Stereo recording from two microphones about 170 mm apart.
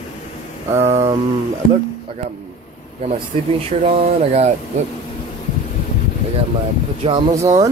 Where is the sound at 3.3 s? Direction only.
35° right (ahead or behind).